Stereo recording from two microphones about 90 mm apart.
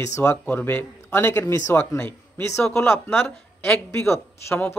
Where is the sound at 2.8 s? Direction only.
25° left (ahead or behind).